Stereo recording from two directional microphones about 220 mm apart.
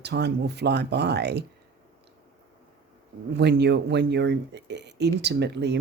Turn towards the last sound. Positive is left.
turn(degrees=-50)  # may be behind; listen again after turning